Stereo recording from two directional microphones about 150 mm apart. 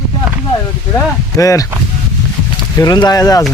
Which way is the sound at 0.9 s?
20° left (ahead or behind).